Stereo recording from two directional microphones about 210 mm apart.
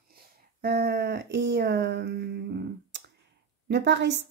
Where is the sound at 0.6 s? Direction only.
45° right (ahead or behind).